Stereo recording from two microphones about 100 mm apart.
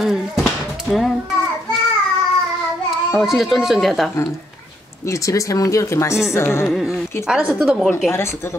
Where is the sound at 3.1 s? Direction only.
5° right (ahead or behind).